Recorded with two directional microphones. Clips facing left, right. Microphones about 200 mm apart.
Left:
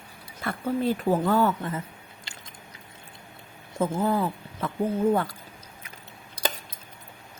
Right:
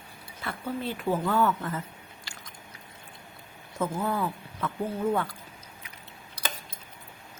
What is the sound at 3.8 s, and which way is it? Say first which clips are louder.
Speech: left 4 dB; 25° left (ahead or behind).